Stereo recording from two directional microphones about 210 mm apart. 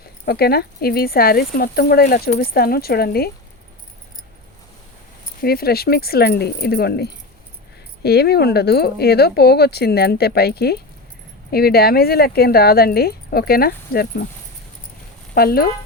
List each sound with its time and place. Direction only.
0.3 s speech: 50° left (ahead or behind)
5.4 s speech: 45° left (ahead or behind)
15.4 s speech: 45° left (ahead or behind)